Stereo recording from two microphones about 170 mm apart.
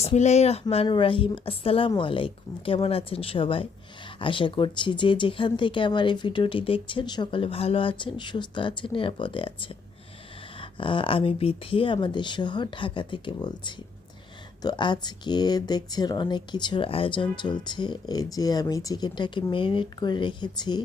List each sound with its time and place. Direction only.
0.0 s speech: 40° left (ahead or behind); by 20.8 s 25° left (ahead or behind)